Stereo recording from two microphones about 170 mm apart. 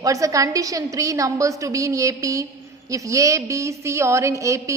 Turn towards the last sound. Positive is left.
turn(degrees=-20)  # may be behind; listen again after turning